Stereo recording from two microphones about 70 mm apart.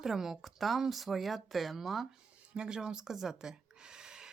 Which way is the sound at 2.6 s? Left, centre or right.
Centre.